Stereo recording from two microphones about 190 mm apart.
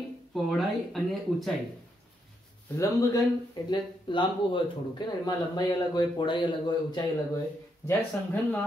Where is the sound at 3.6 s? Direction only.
25° left (ahead or behind).